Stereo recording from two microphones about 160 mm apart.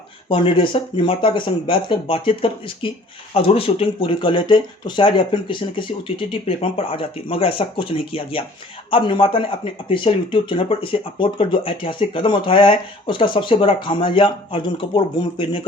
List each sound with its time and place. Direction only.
0.3 s speech: 35° left (ahead or behind)